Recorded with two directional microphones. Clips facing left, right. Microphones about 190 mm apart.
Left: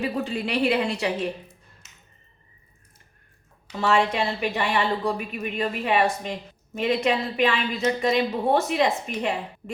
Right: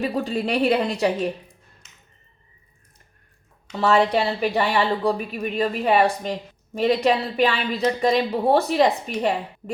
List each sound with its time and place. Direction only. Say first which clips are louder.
0.0 s a woman's voice: right 3 dB; 40° right (ahead or behind)
3.8 s a woman's voice: right 3 dB; 35° right (ahead or behind)